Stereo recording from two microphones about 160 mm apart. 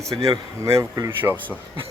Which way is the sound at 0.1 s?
20° right (ahead or behind).